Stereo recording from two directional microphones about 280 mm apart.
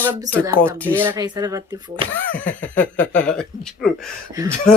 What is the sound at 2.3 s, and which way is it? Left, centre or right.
Speech, centre.